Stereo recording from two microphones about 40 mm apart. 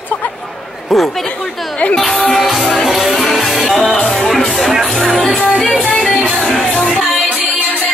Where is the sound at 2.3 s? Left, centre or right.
Centre.